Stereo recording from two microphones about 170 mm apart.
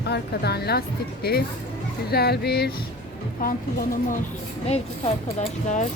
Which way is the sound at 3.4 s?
55° left (ahead or behind).